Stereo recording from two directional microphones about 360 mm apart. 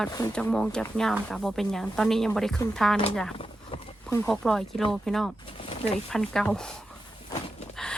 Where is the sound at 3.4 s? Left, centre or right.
Centre.